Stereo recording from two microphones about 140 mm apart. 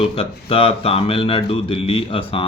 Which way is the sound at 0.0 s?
40° left (ahead or behind).